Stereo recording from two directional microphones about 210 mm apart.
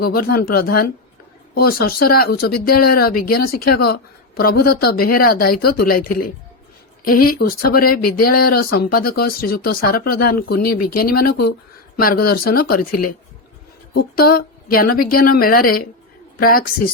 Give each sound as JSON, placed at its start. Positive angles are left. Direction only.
{"t": 0.0, "sound": "speech", "side_deg": 45}
{"t": 7.3, "sound": "speech", "side_deg": 45}